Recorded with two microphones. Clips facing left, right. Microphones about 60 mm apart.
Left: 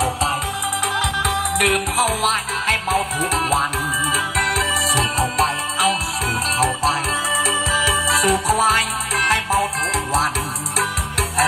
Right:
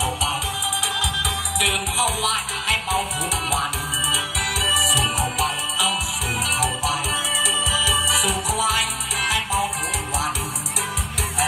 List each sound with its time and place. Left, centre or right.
0.0 s music: left